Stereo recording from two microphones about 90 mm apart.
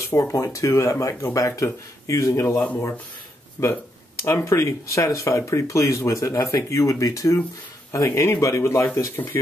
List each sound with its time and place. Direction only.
0.1 s speech: 35° left (ahead or behind)